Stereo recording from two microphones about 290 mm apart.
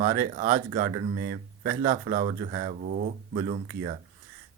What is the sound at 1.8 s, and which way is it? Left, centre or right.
Speech, right.